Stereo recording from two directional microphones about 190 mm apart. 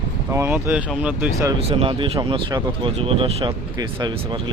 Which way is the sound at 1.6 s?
30° right (ahead or behind).